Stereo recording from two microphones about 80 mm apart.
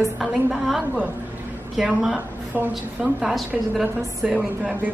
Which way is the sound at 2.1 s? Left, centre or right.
Right.